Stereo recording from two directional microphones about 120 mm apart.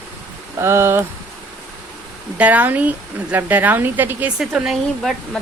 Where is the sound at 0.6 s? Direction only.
20° right (ahead or behind).